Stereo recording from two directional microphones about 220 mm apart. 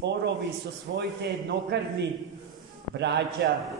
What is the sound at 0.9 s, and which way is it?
Speech, 45° right (ahead or behind).